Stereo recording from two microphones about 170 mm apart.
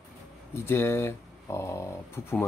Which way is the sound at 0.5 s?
15° left (ahead or behind).